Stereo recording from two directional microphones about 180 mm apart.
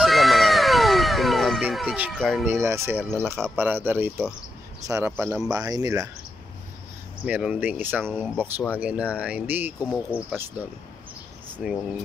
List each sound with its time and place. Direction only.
0.0 s a sound: centre (ahead or behind)
2.4 s speech: 15° right (ahead or behind)
7.2 s speech: 5° right (ahead or behind)
11.5 s speech: centre (ahead or behind)